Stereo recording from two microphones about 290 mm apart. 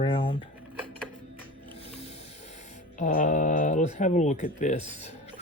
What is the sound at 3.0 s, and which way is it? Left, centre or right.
Speech, left.